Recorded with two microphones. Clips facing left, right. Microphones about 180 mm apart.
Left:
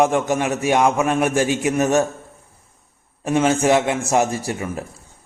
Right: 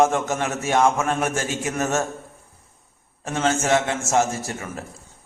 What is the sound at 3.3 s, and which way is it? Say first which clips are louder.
A man's voice: left 5 dB; 15° left (ahead or behind).